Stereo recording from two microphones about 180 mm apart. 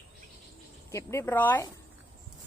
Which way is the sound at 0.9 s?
15° left (ahead or behind).